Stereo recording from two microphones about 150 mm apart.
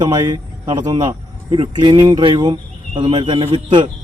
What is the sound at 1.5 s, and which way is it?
Speech, 30° right (ahead or behind).